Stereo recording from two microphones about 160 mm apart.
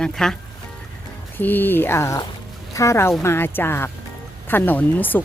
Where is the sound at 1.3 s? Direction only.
10° left (ahead or behind).